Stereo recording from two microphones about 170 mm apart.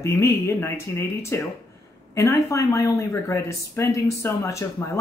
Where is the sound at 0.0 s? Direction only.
15° left (ahead or behind).